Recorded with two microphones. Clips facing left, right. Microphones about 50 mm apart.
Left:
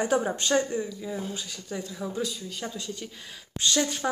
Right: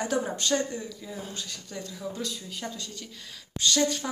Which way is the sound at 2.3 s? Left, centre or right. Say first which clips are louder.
Left 1 dB; centre.